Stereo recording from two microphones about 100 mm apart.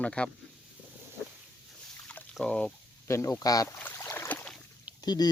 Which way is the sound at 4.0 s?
30° left (ahead or behind).